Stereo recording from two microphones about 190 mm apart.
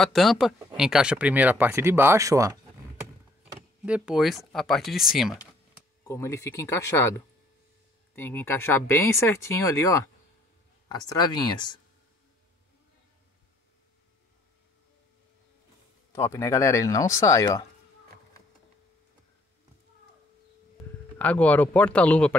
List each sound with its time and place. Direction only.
0.0 s speech: centre (ahead or behind); by 2.5 s 15° right (ahead or behind)
3.8 s speech: 5° right (ahead or behind)
6.0 s speech: 15° left (ahead or behind)
16.1 s speech: 15° left (ahead or behind)
21.2 s speech: 10° left (ahead or behind)